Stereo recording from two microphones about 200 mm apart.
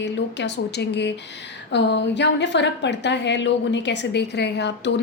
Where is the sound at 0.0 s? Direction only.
60° left (ahead or behind).